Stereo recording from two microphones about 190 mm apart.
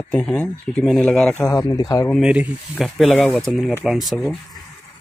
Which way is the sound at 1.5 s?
15° left (ahead or behind).